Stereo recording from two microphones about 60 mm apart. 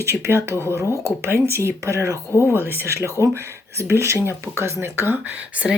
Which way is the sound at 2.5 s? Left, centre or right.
Right.